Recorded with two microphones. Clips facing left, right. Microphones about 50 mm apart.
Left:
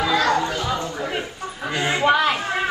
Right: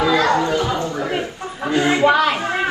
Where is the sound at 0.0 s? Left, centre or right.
Right.